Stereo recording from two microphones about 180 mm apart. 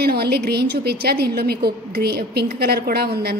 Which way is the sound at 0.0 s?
60° right (ahead or behind).